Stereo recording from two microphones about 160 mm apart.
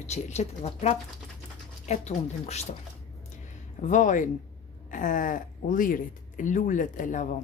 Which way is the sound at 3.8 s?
50° left (ahead or behind).